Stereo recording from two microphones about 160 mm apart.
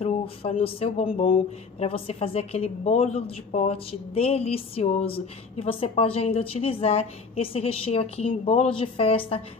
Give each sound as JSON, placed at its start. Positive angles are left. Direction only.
{"t": 0.0, "sound": "speech", "side_deg": 35}